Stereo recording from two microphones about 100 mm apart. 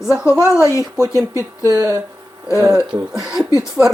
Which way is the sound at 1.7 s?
35° right (ahead or behind).